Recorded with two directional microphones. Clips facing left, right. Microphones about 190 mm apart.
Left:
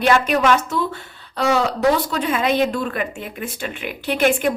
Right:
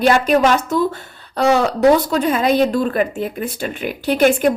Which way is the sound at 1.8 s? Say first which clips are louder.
Right 5 dB; 40° right (ahead or behind).